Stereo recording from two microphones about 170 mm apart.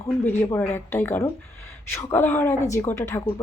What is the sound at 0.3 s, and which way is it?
A woman's voice, 15° left (ahead or behind).